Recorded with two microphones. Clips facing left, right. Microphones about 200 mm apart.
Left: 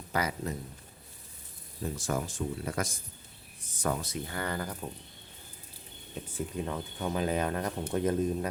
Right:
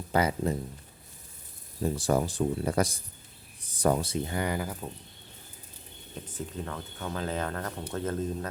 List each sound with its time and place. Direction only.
0.1 s speech: 30° right (ahead or behind)
1.8 s speech: 35° right (ahead or behind); by 4.9 s 5° right (ahead or behind)
6.2 s speech: 10° left (ahead or behind)